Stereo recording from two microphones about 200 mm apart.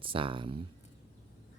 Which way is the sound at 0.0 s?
25° right (ahead or behind).